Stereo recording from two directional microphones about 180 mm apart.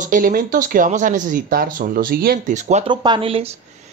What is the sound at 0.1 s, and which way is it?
Speech, 50° right (ahead or behind).